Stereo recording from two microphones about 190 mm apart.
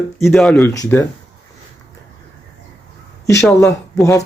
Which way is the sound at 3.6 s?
15° left (ahead or behind).